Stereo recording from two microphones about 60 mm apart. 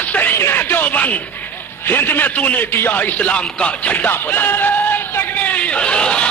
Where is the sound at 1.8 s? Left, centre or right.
Left.